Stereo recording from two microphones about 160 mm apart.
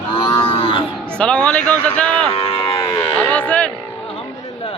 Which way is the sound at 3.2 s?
10° left (ahead or behind).